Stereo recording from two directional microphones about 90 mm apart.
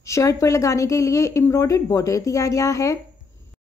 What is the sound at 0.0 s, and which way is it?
Speech, 35° left (ahead or behind).